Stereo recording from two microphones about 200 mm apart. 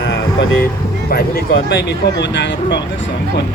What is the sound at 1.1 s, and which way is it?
Speech, 50° left (ahead or behind).